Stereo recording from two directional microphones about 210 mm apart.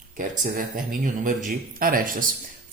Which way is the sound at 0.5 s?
40° right (ahead or behind).